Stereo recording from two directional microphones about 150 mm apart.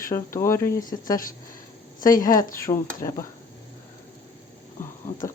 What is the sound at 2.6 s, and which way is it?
Speech, 20° left (ahead or behind).